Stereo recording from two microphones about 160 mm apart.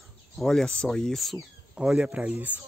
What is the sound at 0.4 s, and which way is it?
Speech, 5° left (ahead or behind).